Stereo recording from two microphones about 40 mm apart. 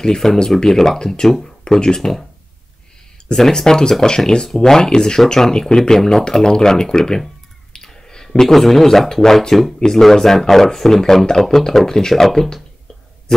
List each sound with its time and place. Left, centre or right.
0.0 s speech: centre
3.3 s speech: centre